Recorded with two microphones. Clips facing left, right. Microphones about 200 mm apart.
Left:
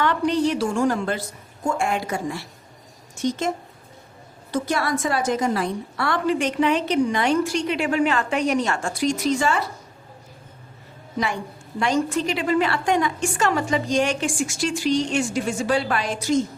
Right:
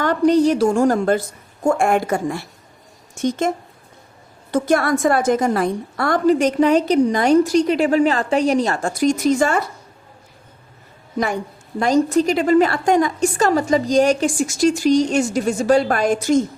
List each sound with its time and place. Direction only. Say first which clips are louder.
0.0 s a woman's voice: right 6 dB; 40° right (ahead or behind)
4.5 s a woman's voice: right 6 dB; 50° right (ahead or behind)
11.8 s a woman's voice: right 6 dB; 40° right (ahead or behind)